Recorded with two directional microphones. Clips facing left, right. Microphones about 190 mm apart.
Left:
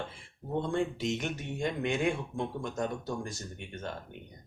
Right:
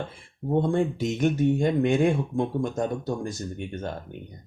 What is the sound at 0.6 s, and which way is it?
Speech, 45° right (ahead or behind).